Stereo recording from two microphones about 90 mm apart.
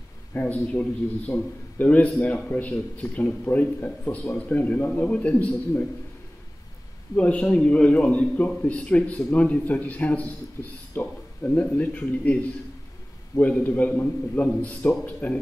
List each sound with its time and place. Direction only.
0.3 s a man's voice: 20° left (ahead or behind)
7.2 s a man's voice: 15° left (ahead or behind)
13.4 s a man's voice: 15° left (ahead or behind)